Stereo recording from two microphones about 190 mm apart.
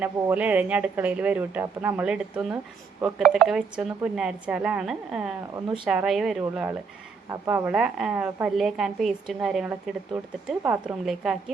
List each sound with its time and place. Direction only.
0.0 s a woman's voice: 10° right (ahead or behind)